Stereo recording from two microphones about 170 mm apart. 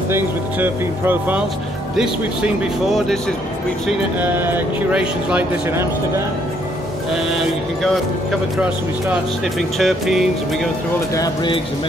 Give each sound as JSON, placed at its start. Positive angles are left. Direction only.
{"t": 0.1, "sound": "speech", "side_deg": -10}
{"t": 4.2, "sound": "speech", "side_deg": -10}
{"t": 7.8, "sound": "speech", "side_deg": 0}
{"t": 11.1, "sound": "speech", "side_deg": 25}